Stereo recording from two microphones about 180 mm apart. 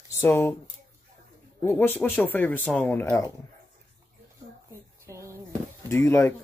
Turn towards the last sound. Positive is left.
turn(degrees=15)  # may be behind; listen again after turning